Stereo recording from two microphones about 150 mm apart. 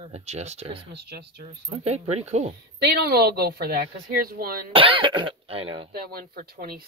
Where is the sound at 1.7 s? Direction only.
45° right (ahead or behind).